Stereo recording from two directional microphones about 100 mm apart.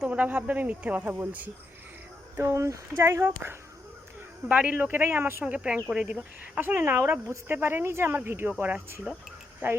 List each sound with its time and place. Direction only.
0.0 s speech: 15° right (ahead or behind)
2.4 s speech: 30° right (ahead or behind)
4.4 s speech: 10° right (ahead or behind)
5.5 s speech: 10° right (ahead or behind)